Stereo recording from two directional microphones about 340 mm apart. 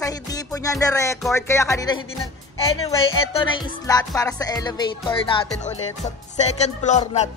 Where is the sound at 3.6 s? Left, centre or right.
Centre.